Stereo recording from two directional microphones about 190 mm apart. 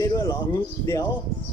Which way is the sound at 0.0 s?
20° left (ahead or behind).